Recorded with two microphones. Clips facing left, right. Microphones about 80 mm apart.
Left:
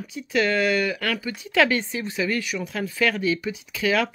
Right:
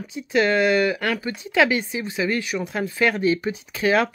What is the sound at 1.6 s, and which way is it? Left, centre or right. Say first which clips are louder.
Speech: right 1 dB; centre.